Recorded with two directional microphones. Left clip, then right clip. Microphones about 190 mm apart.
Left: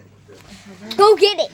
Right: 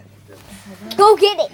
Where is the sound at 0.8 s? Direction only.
15° left (ahead or behind).